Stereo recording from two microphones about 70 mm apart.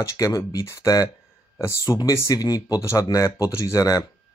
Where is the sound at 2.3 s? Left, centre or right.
Left.